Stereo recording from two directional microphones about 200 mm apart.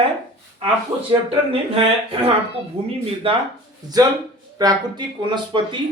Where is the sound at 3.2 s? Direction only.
25° right (ahead or behind).